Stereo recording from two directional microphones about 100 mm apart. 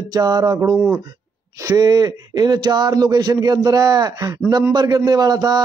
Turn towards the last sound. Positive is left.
turn(degrees=-40)  # may be behind; listen again after turning